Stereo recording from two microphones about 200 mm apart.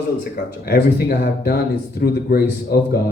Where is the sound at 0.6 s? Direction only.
50° left (ahead or behind).